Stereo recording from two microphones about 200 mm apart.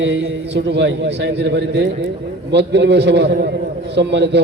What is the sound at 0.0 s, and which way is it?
A man's voice, 65° right (ahead or behind).